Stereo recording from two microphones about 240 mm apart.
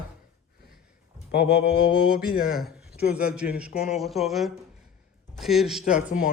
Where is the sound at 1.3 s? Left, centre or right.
Left.